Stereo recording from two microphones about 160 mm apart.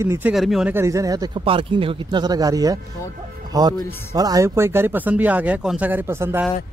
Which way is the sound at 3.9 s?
15° left (ahead or behind).